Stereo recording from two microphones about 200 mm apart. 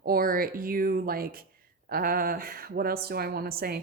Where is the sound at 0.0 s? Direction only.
45° right (ahead or behind).